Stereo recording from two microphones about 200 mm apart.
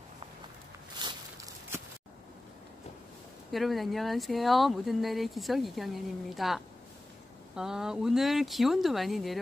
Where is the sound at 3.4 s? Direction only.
Centre (ahead or behind).